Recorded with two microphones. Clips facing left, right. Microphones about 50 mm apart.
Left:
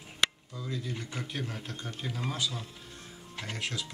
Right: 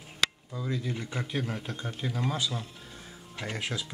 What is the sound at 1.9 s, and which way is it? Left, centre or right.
Speech, centre.